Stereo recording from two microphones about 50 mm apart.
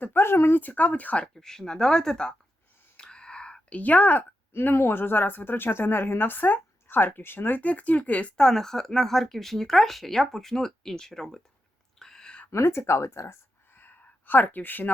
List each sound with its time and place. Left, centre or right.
0.0 s speech: left
0.6 s speech: left
1.3 s speech: centre
3.0 s whispering: centre
3.8 s speech: left
4.7 s speech: left
8.4 s speech: centre
11.9 s whispering: centre
12.5 s speech: left
13.7 s a sound: left